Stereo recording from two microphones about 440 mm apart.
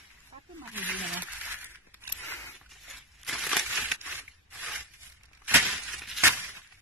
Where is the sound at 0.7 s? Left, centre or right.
Centre.